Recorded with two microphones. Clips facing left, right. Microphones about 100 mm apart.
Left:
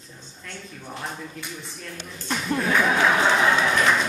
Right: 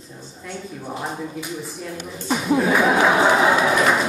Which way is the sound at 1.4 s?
5° right (ahead or behind).